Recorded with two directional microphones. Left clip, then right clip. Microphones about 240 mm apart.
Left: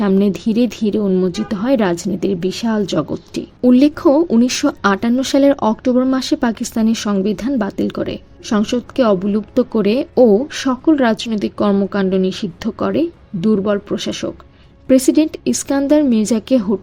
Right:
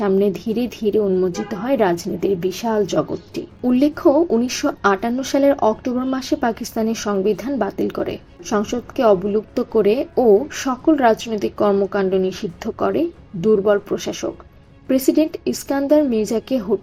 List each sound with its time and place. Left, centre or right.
0.0 s speech: left